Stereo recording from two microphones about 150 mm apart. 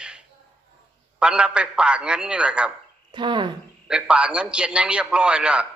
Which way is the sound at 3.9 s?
5° right (ahead or behind).